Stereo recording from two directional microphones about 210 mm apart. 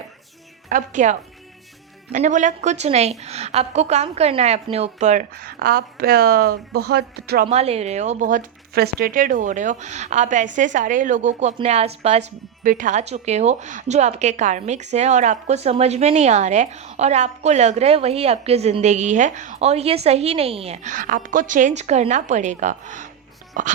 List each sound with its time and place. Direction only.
0.7 s a woman's voice: 35° right (ahead or behind)
5.3 s speech: 45° right (ahead or behind)
7.4 s a woman's voice: 30° right (ahead or behind)